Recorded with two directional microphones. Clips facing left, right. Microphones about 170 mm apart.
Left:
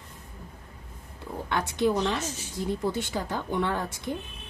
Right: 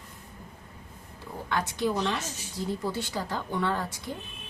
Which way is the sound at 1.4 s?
20° left (ahead or behind).